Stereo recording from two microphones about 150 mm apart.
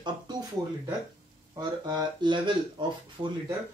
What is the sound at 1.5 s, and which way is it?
Speech, 30° right (ahead or behind).